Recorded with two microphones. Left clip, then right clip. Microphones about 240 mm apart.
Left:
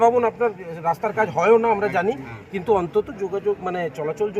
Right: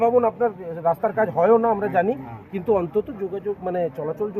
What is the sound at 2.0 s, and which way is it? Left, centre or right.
Speech, left.